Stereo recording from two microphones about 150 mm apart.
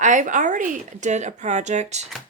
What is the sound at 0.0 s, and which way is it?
Speech, 55° right (ahead or behind).